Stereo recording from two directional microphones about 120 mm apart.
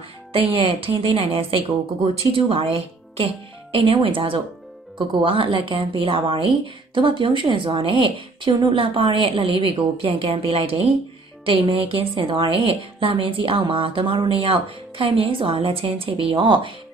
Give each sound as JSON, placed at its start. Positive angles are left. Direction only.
{"t": 0.3, "sound": "a woman's voice", "side_deg": -50}